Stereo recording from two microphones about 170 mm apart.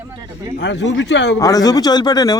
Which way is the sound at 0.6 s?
90° left.